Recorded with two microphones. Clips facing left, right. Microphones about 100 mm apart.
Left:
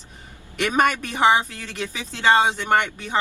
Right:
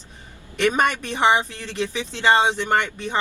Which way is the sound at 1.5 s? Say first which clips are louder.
Right 4 dB; 30° right (ahead or behind).